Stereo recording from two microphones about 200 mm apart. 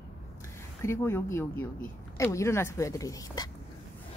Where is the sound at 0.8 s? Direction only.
10° left (ahead or behind).